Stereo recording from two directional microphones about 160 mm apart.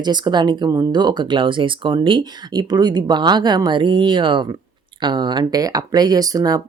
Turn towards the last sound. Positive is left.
turn(degrees=-25)  # may be behind; listen again after turning